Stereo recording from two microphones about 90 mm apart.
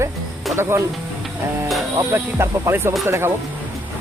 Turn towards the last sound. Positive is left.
turn(degrees=-25)  # may be behind; listen again after turning